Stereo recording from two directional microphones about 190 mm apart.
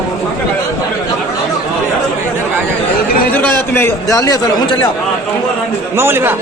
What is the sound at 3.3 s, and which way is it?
A man's voice, 10° left (ahead or behind).